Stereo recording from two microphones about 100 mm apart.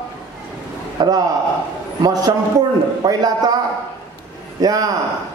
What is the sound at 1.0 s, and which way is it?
A man's voice, 40° right (ahead or behind).